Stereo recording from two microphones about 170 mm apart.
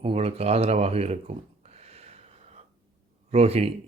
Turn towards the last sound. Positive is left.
turn(degrees=-35)  # may be behind; listen again after turning